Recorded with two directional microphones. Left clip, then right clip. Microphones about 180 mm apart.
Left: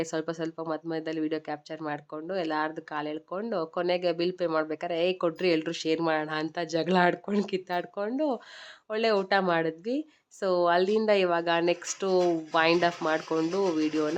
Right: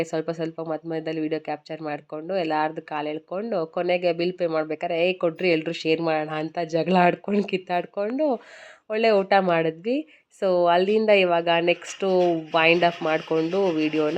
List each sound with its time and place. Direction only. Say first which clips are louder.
0.0 s speech: right 5 dB; 15° right (ahead or behind)